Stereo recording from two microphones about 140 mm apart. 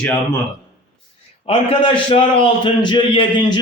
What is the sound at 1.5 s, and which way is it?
A man's voice, 45° left (ahead or behind).